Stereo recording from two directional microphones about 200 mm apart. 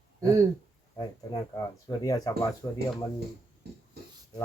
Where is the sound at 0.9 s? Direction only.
20° left (ahead or behind).